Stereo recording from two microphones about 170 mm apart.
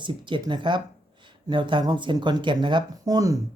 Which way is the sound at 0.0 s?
30° right (ahead or behind).